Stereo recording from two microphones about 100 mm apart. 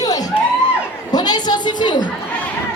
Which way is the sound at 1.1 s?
45° left (ahead or behind).